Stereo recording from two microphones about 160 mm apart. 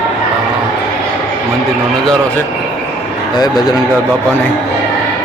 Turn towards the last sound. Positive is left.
turn(degrees=25)  # may be behind; listen again after turning